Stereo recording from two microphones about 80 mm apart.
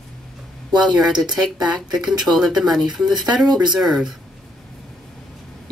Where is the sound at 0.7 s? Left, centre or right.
Right.